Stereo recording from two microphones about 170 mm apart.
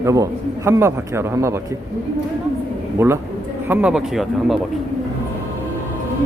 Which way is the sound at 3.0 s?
10° right (ahead or behind).